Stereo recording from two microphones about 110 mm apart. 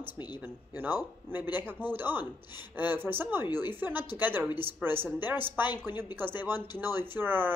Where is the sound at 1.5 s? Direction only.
20° right (ahead or behind).